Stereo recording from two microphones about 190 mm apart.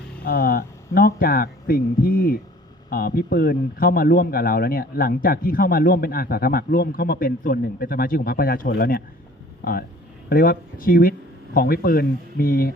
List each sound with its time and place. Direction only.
0.3 s a man's voice: 50° left (ahead or behind)